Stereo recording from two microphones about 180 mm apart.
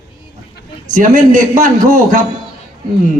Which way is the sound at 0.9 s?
45° right (ahead or behind).